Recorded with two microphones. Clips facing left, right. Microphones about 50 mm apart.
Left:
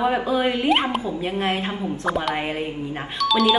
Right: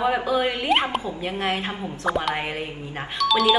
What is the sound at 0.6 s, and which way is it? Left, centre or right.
Wind chime, centre.